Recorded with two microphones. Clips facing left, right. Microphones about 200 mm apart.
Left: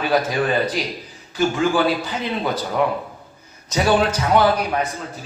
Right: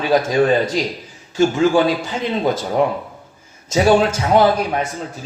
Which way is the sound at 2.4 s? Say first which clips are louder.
Right 4 dB; 25° right (ahead or behind).